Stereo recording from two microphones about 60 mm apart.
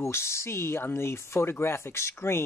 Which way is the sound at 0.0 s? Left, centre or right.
Left.